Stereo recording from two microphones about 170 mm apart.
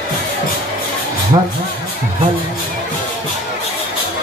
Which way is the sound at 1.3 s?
25° right (ahead or behind).